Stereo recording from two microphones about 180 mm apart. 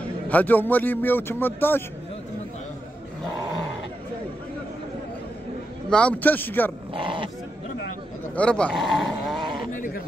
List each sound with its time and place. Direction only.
0.3 s a man's voice: 10° left (ahead or behind)
5.9 s a man's voice: 5° left (ahead or behind)
7.0 s speech: 30° right (ahead or behind)
8.4 s speech: 5° left (ahead or behind)
9.7 s speech: 50° left (ahead or behind)